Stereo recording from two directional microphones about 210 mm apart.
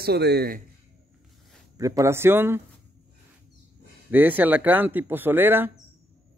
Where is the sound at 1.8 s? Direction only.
15° right (ahead or behind).